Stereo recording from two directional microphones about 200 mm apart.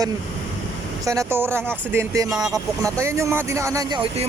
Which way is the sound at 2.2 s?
Centre (ahead or behind).